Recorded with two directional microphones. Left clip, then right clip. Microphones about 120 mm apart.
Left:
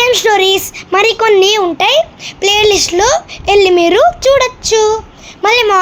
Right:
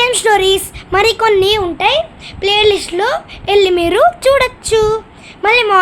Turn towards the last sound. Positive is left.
turn(degrees=40)  # may be behind; listen again after turning